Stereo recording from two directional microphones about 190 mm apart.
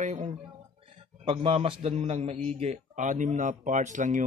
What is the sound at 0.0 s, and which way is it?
A man's voice, 40° right (ahead or behind).